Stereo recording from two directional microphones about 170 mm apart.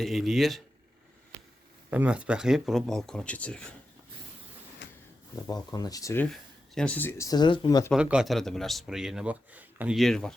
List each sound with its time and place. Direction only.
0.0 s a man's voice: centre (ahead or behind)
1.9 s a man's voice: 10° right (ahead or behind)
5.4 s speech: 20° left (ahead or behind)
6.3 s speech: 5° left (ahead or behind); by 7.9 s 25° left (ahead or behind)
7.9 s a man's voice: 5° right (ahead or behind)